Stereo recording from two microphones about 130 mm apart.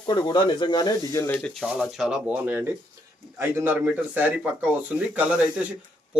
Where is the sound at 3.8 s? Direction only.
10° right (ahead or behind).